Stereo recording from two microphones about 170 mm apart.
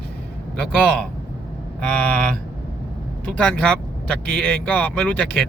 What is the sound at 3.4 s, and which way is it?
Speech, 5° left (ahead or behind).